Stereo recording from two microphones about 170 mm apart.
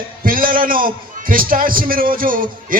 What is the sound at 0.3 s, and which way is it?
A man's voice, 55° right (ahead or behind).